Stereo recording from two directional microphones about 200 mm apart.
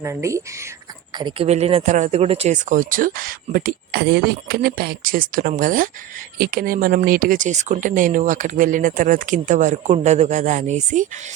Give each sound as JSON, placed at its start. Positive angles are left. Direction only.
{"t": 0.0, "sound": "speech", "side_deg": -15}
{"t": 1.1, "sound": "speech", "side_deg": -25}